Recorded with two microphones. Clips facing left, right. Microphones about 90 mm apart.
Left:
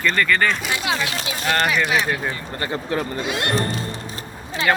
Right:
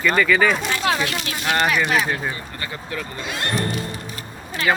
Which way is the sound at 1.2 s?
Centre (ahead or behind).